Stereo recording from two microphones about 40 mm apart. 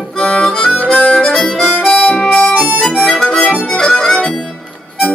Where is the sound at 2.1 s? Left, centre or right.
Centre.